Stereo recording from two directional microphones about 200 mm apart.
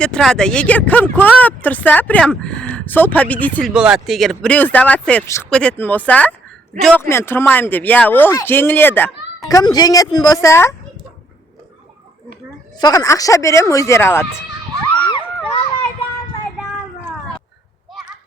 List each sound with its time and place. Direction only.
0.0 s speech: 5° left (ahead or behind)
3.7 s speech: 5° right (ahead or behind); by 10.8 s 15° left (ahead or behind)
12.8 s speech: 15° left (ahead or behind)